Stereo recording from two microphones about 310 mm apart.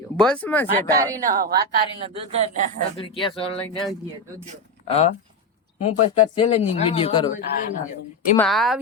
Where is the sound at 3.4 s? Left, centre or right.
Centre.